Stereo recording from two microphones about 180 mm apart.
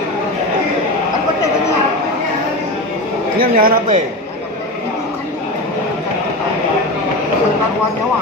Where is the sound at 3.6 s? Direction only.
50° right (ahead or behind).